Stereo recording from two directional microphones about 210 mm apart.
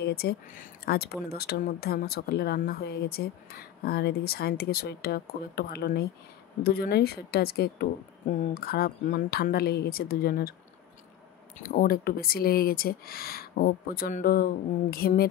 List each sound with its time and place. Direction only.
0.0 s speech: 50° left (ahead or behind)
11.5 s speech: 40° left (ahead or behind)